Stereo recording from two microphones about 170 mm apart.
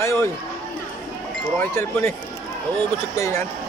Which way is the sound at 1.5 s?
10° left (ahead or behind).